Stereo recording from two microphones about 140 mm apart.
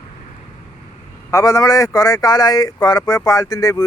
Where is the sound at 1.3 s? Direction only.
25° left (ahead or behind).